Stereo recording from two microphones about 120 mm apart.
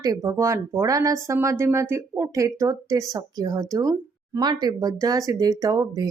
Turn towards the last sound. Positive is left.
turn(degrees=-35)  # may be behind; listen again after turning